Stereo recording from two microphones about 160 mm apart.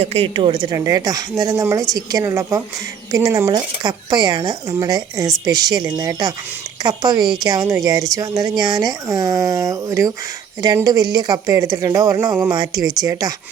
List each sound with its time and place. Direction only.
0.0 s speech: 40° right (ahead or behind); by 13.3 s 20° right (ahead or behind)